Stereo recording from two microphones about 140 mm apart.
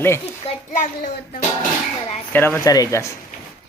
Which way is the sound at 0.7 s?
75° left (ahead or behind).